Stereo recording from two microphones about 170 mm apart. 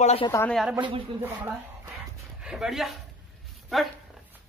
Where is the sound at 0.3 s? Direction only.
10° left (ahead or behind).